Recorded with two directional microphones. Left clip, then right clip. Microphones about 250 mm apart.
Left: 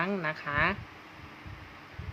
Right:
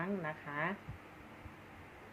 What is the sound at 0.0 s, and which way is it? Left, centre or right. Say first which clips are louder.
Speech: left 9 dB; left.